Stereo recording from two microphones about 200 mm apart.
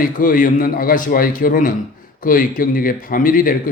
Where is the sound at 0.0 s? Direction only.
45° left (ahead or behind).